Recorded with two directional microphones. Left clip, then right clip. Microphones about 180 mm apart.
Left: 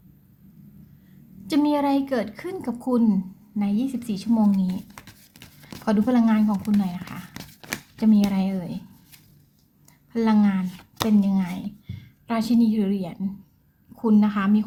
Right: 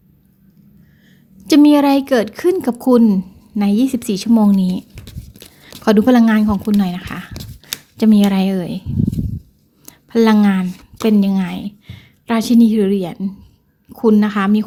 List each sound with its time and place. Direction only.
1.5 s a woman's voice: 40° right (ahead or behind)
5.8 s a woman's voice: 45° right (ahead or behind)
9.8 s a woman's voice: 45° right (ahead or behind)